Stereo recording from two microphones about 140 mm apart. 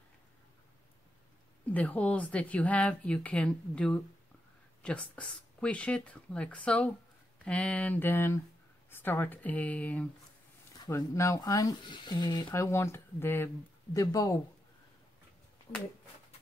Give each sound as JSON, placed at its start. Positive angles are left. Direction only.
{"t": 1.7, "sound": "speech", "side_deg": 10}
{"t": 10.9, "sound": "speech", "side_deg": 20}